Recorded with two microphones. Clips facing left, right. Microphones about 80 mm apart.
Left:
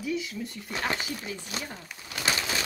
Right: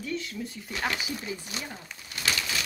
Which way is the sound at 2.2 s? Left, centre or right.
Left.